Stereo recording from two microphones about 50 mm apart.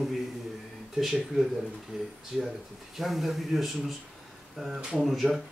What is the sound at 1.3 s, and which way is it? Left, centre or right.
Speech, right.